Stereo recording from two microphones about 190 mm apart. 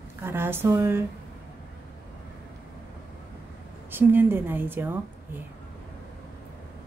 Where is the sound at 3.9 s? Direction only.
10° right (ahead or behind).